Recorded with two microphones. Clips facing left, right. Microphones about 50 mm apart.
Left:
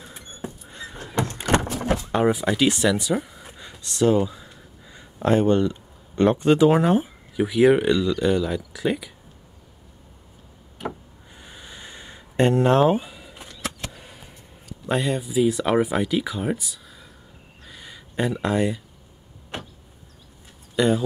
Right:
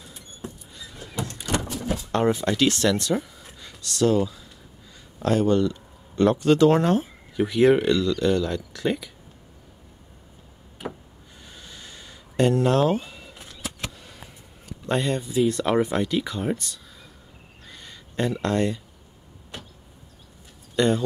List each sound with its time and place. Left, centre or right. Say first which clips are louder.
0.4 s rodents: left 4 dB; left
1.3 s horse: left 6 dB; left
2.1 s speech: even; centre
10.8 s a sound: left 3 dB; centre
11.3 s a sound: left 3 dB; centre
14.9 s speech: left 1 dB; centre
17.6 s a sound: left 2 dB; centre
19.5 s vehicle: left 6 dB; left
20.7 s speech: left 1 dB; centre